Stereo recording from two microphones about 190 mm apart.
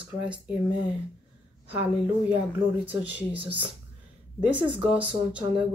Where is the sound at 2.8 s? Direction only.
10° right (ahead or behind).